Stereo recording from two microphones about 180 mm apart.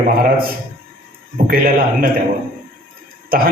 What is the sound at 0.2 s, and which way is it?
A man's voice, 55° right (ahead or behind).